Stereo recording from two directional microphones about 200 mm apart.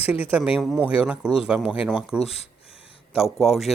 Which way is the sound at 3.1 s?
Centre (ahead or behind).